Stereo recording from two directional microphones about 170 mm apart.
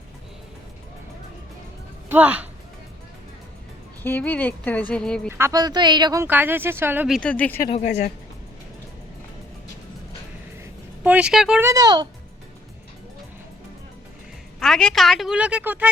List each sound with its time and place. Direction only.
2.0 s speech: 10° right (ahead or behind)
4.0 s speech: 10° left (ahead or behind)
5.3 s a woman's voice: 20° right (ahead or behind)
6.2 s speech: 10° right (ahead or behind)
7.2 s speech: 10° left (ahead or behind)
7.7 s speech: 40° left (ahead or behind)
11.0 s speech: 5° right (ahead or behind)
11.6 s a woman's voice: 20° right (ahead or behind)
14.6 s a woman's voice: 5° left (ahead or behind)